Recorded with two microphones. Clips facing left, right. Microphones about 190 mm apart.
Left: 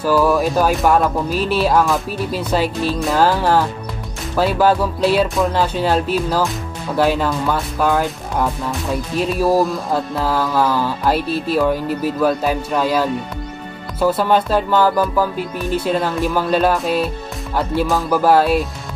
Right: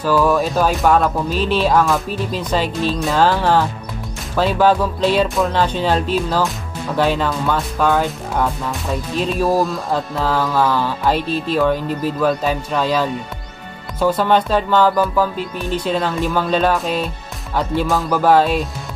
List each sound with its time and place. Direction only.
0.0 s music: 10° left (ahead or behind)
7.0 s speech: 5° left (ahead or behind)
9.2 s music: 5° left (ahead or behind)